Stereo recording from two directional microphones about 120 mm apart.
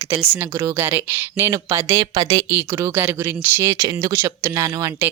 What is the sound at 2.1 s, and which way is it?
A woman's voice, 35° right (ahead or behind).